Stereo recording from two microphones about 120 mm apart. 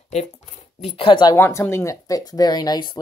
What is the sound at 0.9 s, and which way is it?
Speech, 45° left (ahead or behind).